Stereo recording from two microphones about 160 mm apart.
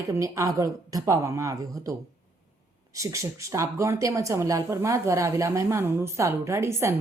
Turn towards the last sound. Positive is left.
turn(degrees=-15)  # may be behind; listen again after turning